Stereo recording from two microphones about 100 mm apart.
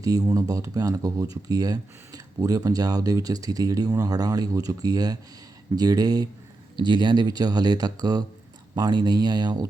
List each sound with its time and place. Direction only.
0.0 s speech: 35° right (ahead or behind)